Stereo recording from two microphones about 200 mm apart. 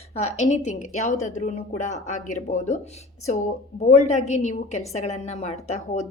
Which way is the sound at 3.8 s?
35° left (ahead or behind).